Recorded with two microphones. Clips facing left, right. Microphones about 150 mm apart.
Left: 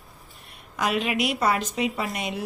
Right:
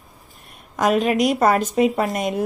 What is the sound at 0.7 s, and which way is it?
Speech, 45° right (ahead or behind).